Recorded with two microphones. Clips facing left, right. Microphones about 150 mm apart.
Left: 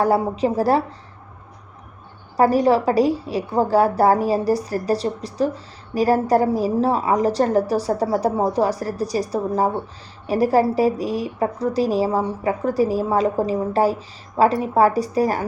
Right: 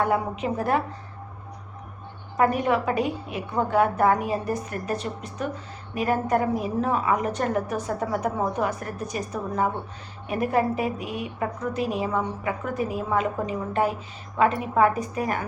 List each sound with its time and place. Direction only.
0.0 s a woman's voice: 35° left (ahead or behind)
2.3 s a woman's voice: 35° left (ahead or behind)